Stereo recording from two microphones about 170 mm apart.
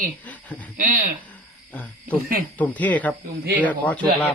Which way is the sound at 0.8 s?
55° right (ahead or behind).